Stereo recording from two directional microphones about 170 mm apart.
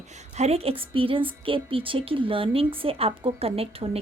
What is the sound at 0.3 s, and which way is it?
Speech, 35° right (ahead or behind).